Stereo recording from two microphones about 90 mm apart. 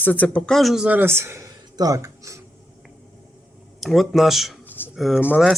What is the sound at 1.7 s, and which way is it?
Speech, 45° right (ahead or behind).